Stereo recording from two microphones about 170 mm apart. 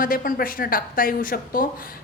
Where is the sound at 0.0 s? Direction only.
55° left (ahead or behind).